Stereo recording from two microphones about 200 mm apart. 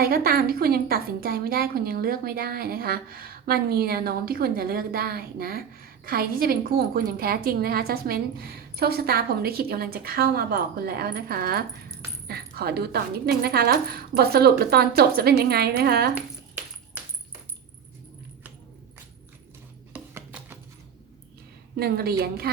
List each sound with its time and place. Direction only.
0.0 s a woman's voice: 50° right (ahead or behind)
19.9 s a sound: 10° right (ahead or behind)
21.8 s a woman's voice: 50° right (ahead or behind)